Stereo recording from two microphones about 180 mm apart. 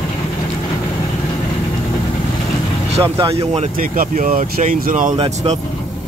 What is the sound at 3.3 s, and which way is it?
Speech, 35° right (ahead or behind).